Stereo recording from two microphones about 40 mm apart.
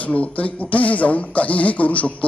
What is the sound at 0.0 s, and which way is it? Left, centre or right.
Speech, left.